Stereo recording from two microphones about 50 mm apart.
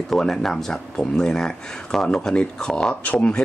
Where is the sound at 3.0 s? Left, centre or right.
Left.